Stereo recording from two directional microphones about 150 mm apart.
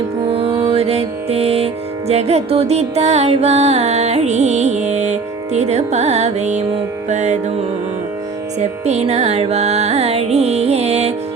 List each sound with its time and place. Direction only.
0.3 s music: 40° right (ahead or behind)
8.5 s music: 50° right (ahead or behind)